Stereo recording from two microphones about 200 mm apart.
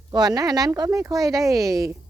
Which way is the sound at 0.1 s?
20° right (ahead or behind).